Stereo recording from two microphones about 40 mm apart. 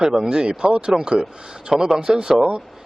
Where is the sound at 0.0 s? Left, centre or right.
Centre.